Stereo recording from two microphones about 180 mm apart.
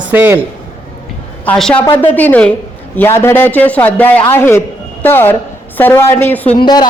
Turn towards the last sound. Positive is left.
turn(degrees=25)  # may be behind; listen again after turning